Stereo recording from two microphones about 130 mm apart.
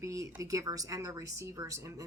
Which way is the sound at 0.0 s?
25° right (ahead or behind).